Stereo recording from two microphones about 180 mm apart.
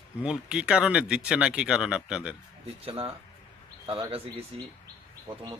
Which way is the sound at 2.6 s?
30° right (ahead or behind).